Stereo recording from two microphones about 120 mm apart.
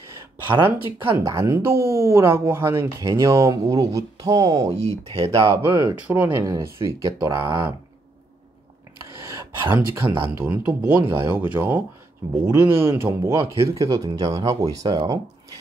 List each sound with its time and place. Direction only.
0.7 s speech: 20° right (ahead or behind)
6.4 s speech: 25° right (ahead or behind)
9.3 s speech: 25° right (ahead or behind)
10.0 s speech: 45° right (ahead or behind)
10.3 s speech: 20° right (ahead or behind); by 15.1 s 35° right (ahead or behind)